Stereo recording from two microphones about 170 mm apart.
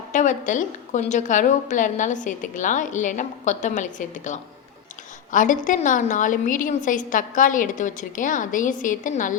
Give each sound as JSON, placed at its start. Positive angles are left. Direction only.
{"t": 0.1, "sound": "a woman's voice", "side_deg": 50}